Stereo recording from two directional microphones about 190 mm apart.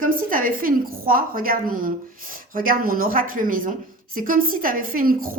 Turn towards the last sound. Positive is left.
turn(degrees=-50)  # may be behind; listen again after turning